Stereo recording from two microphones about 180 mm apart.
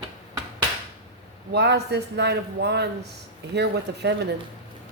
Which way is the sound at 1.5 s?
70° right (ahead or behind).